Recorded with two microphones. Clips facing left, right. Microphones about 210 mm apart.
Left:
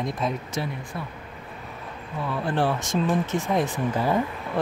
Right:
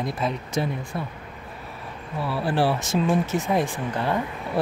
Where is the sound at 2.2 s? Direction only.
5° right (ahead or behind).